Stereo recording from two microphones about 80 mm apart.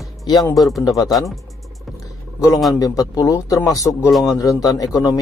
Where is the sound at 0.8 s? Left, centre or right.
Left.